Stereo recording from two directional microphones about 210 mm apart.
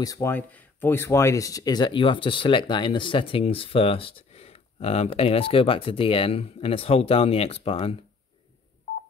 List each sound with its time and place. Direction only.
0.0 s speech: 15° left (ahead or behind)